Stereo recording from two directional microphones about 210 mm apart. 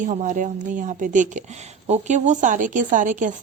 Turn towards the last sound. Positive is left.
turn(degrees=-35)  # may be behind; listen again after turning